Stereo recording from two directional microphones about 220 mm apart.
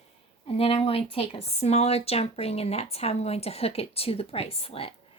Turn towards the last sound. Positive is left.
turn(degrees=25)  # may be behind; listen again after turning